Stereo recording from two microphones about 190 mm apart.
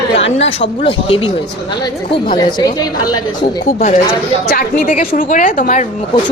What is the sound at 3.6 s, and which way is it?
A woman's voice, 45° left (ahead or behind).